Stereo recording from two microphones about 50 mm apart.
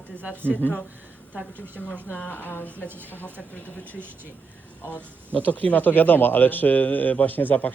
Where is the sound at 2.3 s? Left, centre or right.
Left.